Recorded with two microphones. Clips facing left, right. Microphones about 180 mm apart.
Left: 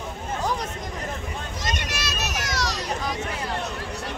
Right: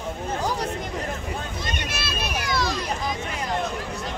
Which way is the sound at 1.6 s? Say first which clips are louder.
Even; 80° left.